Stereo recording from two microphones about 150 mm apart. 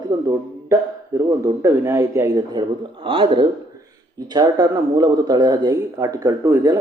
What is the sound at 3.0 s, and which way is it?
Speech, 35° right (ahead or behind).